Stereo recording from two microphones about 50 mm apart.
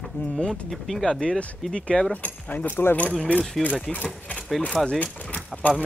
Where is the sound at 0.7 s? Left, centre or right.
Centre.